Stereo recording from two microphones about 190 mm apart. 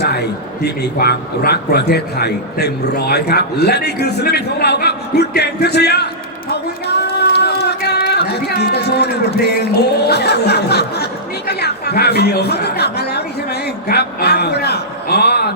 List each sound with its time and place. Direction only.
0.0 s a man's voice: 60° left (ahead or behind)
6.5 s a sound: 60° left (ahead or behind)
10.1 s speech: 60° left (ahead or behind)